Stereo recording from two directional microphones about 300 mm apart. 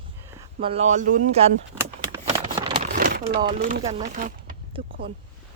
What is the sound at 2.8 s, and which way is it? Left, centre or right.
Speech, right.